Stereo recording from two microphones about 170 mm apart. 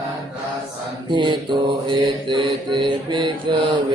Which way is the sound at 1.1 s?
25° right (ahead or behind).